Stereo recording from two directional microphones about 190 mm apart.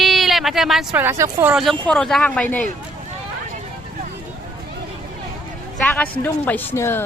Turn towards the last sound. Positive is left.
turn(degrees=15)  # may be behind; listen again after turning